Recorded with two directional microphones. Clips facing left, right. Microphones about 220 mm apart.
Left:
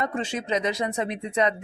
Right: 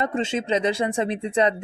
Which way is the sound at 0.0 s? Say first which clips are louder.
Right 4 dB; 25° right (ahead or behind).